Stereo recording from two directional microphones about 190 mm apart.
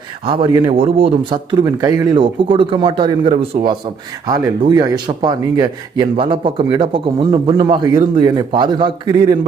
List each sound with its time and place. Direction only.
0.3 s speech: 25° right (ahead or behind)